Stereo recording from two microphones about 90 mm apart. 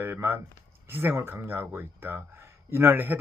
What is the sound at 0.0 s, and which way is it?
Speech, 25° right (ahead or behind).